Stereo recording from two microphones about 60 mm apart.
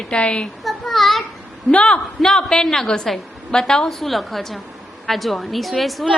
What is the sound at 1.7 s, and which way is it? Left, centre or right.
Speech, centre.